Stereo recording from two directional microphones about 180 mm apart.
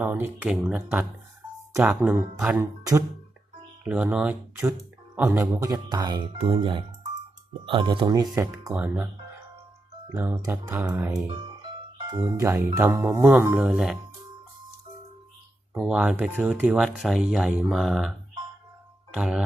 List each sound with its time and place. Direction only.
0.0 s speech: 10° right (ahead or behind)
3.8 s speech: 5° right (ahead or behind)
10.2 s speech: 15° right (ahead or behind)
15.7 s speech: 5° right (ahead or behind)
19.1 s speech: 5° right (ahead or behind)